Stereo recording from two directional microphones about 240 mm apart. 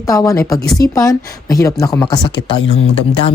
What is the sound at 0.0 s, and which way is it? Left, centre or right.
Speech, centre.